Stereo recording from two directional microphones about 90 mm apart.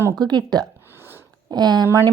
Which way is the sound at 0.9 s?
25° right (ahead or behind).